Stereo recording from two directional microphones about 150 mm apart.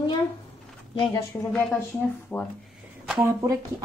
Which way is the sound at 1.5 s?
5° left (ahead or behind).